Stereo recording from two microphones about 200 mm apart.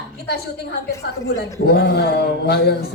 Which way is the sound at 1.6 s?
55° left (ahead or behind).